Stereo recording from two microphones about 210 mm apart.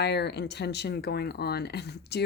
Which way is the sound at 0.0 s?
50° left (ahead or behind).